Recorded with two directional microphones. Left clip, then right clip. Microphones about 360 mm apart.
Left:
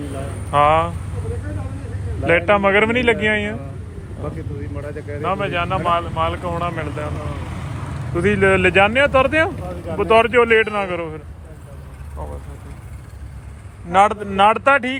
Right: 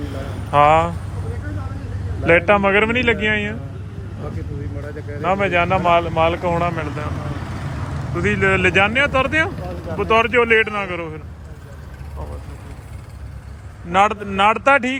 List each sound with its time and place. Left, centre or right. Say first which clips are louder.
0.5 s speech: right 2 dB; centre
2.2 s speech: right 1 dB; centre
5.2 s speech: right 4 dB; centre
7.3 s vehicle: right 1 dB; right
8.1 s speech: left 2 dB; centre
13.9 s speech: left 1 dB; centre